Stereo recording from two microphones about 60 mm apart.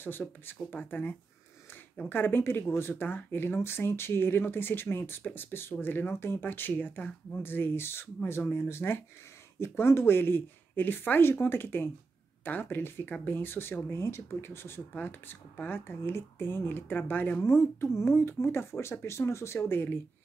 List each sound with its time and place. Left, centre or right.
0.0 s speech: left
16.0 s speech: left
17.4 s speech: left